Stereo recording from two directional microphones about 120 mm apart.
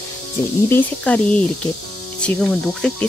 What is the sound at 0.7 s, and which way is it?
A child's voice, 15° left (ahead or behind).